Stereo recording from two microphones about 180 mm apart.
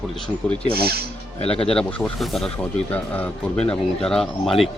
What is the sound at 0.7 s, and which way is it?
Speech, 60° right (ahead or behind).